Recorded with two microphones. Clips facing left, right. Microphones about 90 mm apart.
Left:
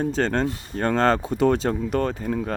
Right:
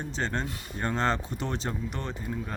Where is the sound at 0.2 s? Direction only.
75° left (ahead or behind).